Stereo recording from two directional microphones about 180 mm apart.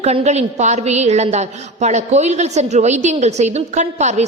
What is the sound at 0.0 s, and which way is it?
A woman's voice, 35° right (ahead or behind).